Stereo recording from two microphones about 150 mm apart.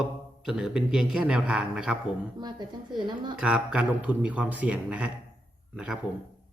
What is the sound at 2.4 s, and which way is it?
Speech, 30° right (ahead or behind).